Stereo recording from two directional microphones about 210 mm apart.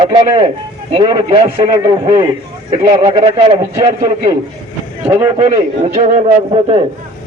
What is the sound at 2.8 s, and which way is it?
A man's voice, 30° right (ahead or behind).